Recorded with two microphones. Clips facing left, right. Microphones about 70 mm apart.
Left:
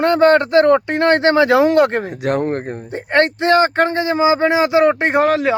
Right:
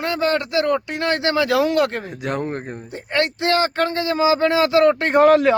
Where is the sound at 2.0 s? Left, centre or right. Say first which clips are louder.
Left 6 dB; left.